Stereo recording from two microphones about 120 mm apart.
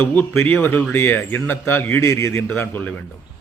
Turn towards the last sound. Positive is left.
turn(degrees=15)  # may be behind; listen again after turning